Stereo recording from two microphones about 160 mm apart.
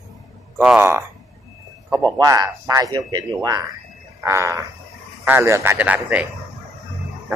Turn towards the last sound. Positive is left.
turn(degrees=-10)  # may be behind; listen again after turning